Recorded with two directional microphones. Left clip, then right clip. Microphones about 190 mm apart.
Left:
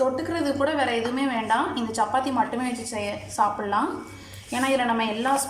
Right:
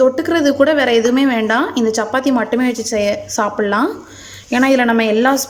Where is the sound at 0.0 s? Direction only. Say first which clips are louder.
Right 11 dB; 55° right (ahead or behind).